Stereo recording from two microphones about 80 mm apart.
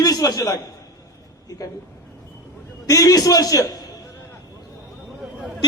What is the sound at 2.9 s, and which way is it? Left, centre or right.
Speech, left.